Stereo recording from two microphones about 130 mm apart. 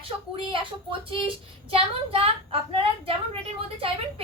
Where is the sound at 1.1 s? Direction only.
45° right (ahead or behind).